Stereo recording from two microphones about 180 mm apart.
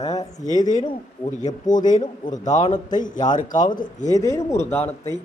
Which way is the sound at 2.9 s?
25° left (ahead or behind).